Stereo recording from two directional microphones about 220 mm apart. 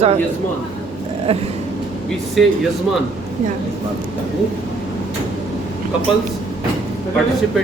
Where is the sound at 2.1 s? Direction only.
Centre (ahead or behind).